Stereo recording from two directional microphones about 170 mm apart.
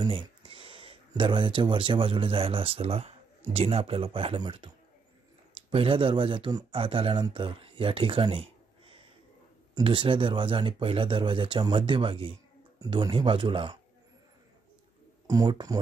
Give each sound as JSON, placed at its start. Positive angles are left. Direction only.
{"t": 0.0, "sound": "speech", "side_deg": -30}
{"t": 5.7, "sound": "speech", "side_deg": -30}
{"t": 15.2, "sound": "speech", "side_deg": -25}